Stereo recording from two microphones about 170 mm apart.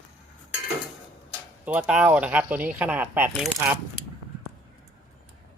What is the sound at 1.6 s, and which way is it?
Speech, 10° right (ahead or behind).